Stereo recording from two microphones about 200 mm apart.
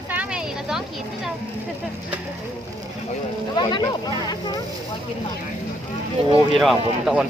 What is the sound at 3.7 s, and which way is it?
Speech, 20° left (ahead or behind).